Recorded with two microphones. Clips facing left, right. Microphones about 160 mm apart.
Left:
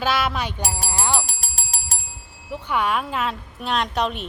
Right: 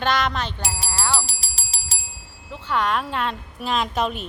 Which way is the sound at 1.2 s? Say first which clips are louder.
Left 3 dB; 50° left (ahead or behind).